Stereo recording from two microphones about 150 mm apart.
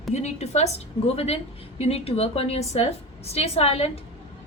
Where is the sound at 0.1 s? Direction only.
50° left (ahead or behind).